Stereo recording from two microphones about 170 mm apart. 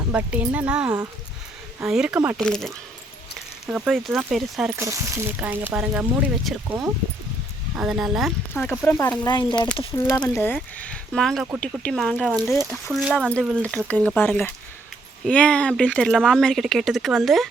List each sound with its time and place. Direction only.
0.1 s speech: 10° right (ahead or behind)
2.4 s speech: 5° left (ahead or behind)
4.8 s speech: 15° right (ahead or behind)
8.5 s speech: 10° left (ahead or behind); by 9.6 s 25° left (ahead or behind)
10.2 s speech: 10° left (ahead or behind)